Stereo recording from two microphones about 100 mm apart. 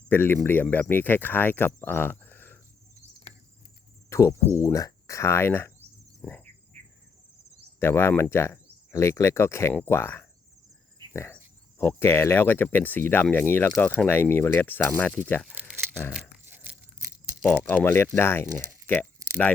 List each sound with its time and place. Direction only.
0.1 s speech: 20° left (ahead or behind)
4.1 s insect: 30° left (ahead or behind)
4.5 s speech: 30° left (ahead or behind)
6.2 s insect: 20° left (ahead or behind)
6.8 s insect: 90° right
7.8 s speech: 25° left (ahead or behind)
15.6 s a sound: 15° left (ahead or behind)
16.5 s tearing: 15° right (ahead or behind)
17.8 s speech: 20° left (ahead or behind)